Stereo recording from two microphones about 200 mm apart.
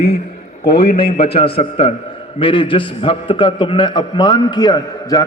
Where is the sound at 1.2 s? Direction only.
30° left (ahead or behind).